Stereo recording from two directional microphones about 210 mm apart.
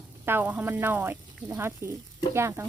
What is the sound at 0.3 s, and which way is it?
Speech, 10° right (ahead or behind).